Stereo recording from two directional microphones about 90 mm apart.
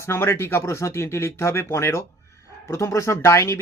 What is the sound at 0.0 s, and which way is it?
Speech, 30° left (ahead or behind).